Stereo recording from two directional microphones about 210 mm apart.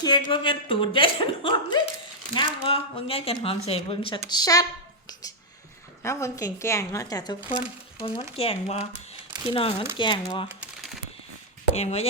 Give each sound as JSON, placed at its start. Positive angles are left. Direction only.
{"t": 0.0, "sound": "speech", "side_deg": 20}
{"t": 6.0, "sound": "speech", "side_deg": 15}
{"t": 8.4, "sound": "speech", "side_deg": 30}
{"t": 10.6, "sound": "typing", "side_deg": 0}
{"t": 11.7, "sound": "speech", "side_deg": 30}